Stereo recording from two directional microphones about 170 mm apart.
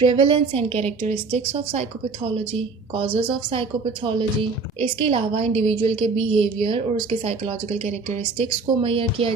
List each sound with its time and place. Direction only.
0.0 s a woman's voice: 30° right (ahead or behind)
1.0 s speech: 45° right (ahead or behind)
2.3 s a woman's voice: 30° right (ahead or behind)